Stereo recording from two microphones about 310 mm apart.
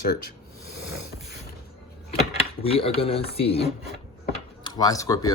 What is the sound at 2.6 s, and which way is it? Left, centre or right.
Speech, centre.